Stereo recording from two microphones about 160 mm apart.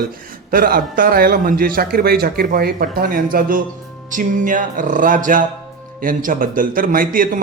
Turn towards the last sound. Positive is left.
turn(degrees=-60)  # may be behind; listen again after turning